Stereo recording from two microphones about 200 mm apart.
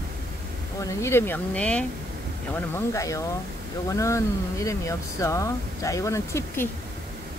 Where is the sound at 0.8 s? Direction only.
15° left (ahead or behind).